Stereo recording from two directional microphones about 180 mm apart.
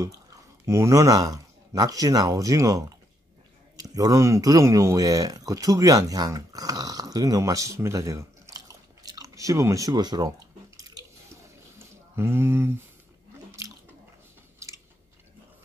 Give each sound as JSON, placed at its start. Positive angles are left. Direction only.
{"t": 0.0, "sound": "speech", "side_deg": -15}
{"t": 12.2, "sound": "speech", "side_deg": -15}